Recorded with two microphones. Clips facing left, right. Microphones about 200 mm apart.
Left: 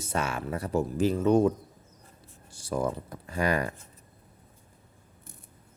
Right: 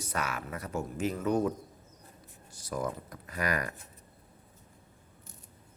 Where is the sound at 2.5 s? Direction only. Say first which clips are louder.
Left 5 dB; 30° left (ahead or behind).